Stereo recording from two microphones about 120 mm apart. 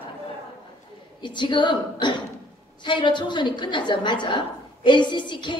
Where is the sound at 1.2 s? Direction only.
40° left (ahead or behind).